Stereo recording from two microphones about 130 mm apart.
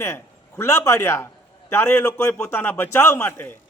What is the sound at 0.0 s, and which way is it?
A man's voice, 20° left (ahead or behind).